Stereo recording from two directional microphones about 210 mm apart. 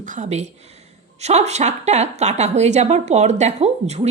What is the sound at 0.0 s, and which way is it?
A woman's voice, 35° right (ahead or behind).